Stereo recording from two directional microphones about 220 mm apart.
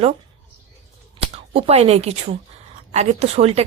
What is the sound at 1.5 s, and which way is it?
A woman's voice, 30° right (ahead or behind).